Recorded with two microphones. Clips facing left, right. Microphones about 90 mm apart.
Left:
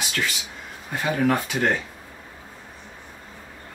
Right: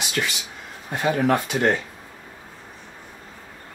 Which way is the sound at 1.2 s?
25° right (ahead or behind).